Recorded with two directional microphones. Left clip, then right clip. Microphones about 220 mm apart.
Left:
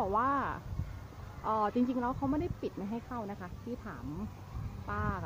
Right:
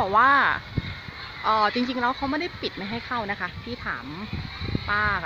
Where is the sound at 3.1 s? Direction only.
15° right (ahead or behind).